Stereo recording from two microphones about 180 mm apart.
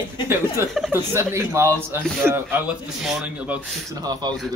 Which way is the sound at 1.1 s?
15° right (ahead or behind).